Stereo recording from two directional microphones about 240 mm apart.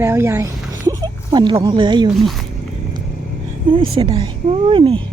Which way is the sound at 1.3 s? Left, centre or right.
Centre.